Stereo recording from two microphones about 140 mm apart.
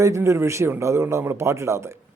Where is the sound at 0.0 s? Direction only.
20° right (ahead or behind).